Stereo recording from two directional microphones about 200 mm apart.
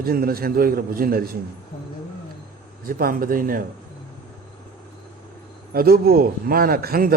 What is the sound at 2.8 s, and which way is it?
Speech, 45° right (ahead or behind).